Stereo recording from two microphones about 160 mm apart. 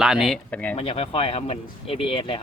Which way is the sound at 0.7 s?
35° left (ahead or behind).